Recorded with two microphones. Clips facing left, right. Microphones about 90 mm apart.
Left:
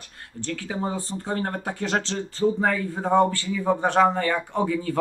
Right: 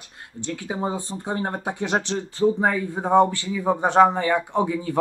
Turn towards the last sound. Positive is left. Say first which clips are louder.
# right 2 dB
turn(degrees=-15)  # may be behind; listen again after turning